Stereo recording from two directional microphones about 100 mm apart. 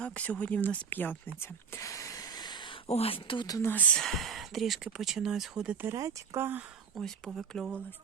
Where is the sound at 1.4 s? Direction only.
30° left (ahead or behind); by 2.7 s 50° left (ahead or behind).